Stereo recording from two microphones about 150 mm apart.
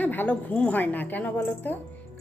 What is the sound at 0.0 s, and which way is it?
Speech, 10° left (ahead or behind).